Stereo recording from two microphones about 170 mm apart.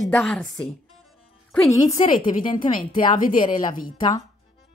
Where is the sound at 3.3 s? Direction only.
30° left (ahead or behind).